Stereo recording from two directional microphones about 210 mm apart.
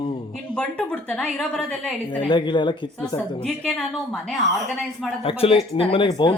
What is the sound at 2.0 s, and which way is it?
Speech, 20° left (ahead or behind).